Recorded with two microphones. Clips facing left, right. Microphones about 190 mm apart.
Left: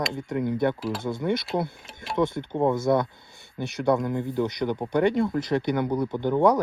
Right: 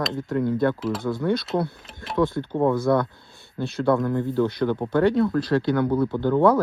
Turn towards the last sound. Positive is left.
turn(degrees=15)  # may be behind; listen again after turning